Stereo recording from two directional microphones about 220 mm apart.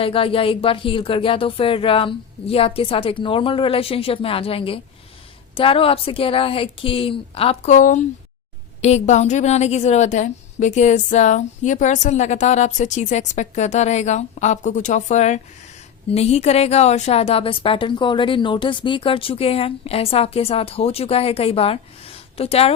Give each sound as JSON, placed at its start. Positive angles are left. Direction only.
{"t": 0.0, "sound": "a woman's voice", "side_deg": 25}